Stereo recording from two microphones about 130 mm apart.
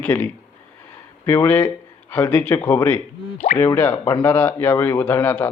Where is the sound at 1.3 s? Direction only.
15° left (ahead or behind).